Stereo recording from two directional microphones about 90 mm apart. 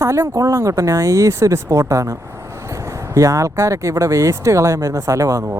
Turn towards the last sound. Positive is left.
turn(degrees=-35)  # may be behind; listen again after turning